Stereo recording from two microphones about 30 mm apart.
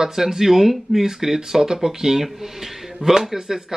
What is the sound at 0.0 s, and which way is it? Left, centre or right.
Speech, centre.